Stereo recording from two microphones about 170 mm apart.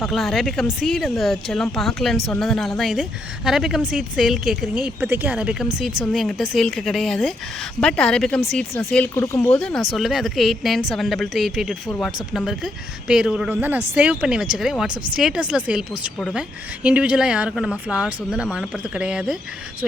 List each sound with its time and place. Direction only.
0.0 s speech: centre (ahead or behind)
9.1 s speech: 15° left (ahead or behind)
9.6 s speech: 5° left (ahead or behind)
16.8 s speech: 5° right (ahead or behind)